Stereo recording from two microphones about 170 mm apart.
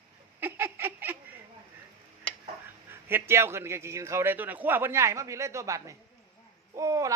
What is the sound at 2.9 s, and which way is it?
A man's voice, 15° right (ahead or behind).